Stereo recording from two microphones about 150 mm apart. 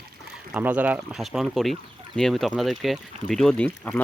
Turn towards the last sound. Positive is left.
turn(degrees=5)  # may be behind; listen again after turning